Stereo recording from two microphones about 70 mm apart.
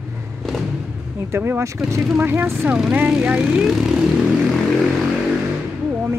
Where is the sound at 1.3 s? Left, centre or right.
Right.